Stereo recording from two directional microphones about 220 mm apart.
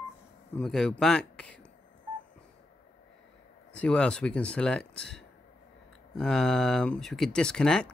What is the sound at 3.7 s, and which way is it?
Speech, 5° left (ahead or behind).